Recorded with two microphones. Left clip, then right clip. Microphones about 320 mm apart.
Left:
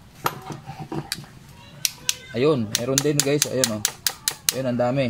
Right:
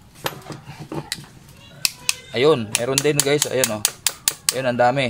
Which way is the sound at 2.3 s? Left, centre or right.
Right.